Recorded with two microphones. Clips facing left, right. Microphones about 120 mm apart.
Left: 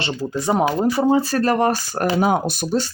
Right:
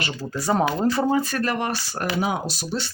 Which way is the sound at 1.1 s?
30° left (ahead or behind).